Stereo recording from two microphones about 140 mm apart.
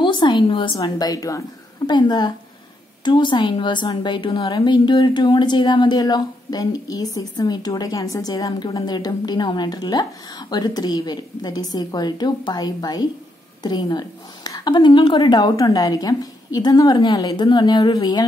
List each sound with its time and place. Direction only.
0.0 s a woman's voice: 35° left (ahead or behind)